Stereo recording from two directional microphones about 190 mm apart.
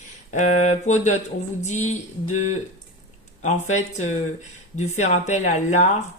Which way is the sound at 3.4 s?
40° left (ahead or behind).